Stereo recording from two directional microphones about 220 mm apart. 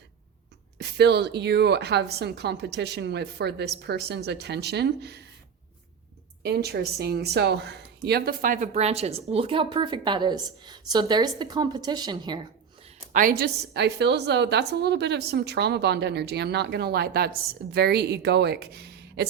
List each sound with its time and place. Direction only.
0.8 s a woman's voice: 50° right (ahead or behind)
6.4 s speech: 45° right (ahead or behind); by 12.9 s 20° right (ahead or behind)
13.1 s a woman's voice: 40° right (ahead or behind)